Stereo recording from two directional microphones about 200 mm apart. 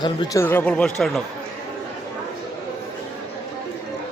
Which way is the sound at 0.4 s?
10° left (ahead or behind).